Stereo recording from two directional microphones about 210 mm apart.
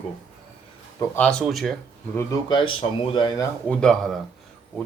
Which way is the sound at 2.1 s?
20° left (ahead or behind).